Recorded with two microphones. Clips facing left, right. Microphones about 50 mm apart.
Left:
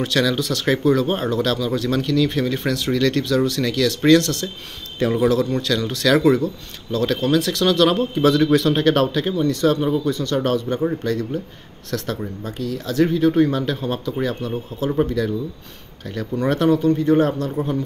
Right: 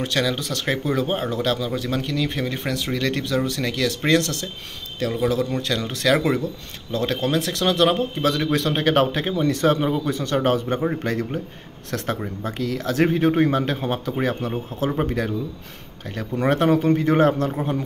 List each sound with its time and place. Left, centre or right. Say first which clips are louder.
0.0 s a man's voice: left 3 dB; centre
8.2 s a man's voice: left 6 dB; centre; by 12.5 s right
12.5 s speech: left 2 dB; right
14.0 s speech: even; right
16.4 s speech: left 1 dB; right
16.9 s a man's voice: left 1 dB; right